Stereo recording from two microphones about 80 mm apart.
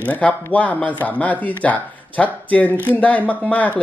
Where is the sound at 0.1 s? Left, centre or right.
Centre.